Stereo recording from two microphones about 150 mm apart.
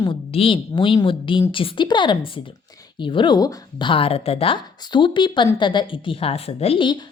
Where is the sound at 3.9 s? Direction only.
40° left (ahead or behind).